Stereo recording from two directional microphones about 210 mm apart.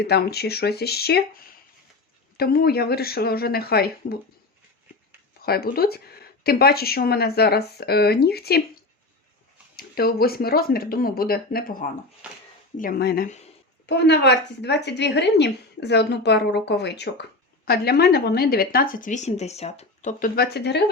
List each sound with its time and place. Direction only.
0.0 s speech: 50° left (ahead or behind)
2.4 s speech: 45° left (ahead or behind)
5.4 s speech: 45° left (ahead or behind)
12.2 s a sound: 5° right (ahead or behind)
12.7 s speech: 40° left (ahead or behind)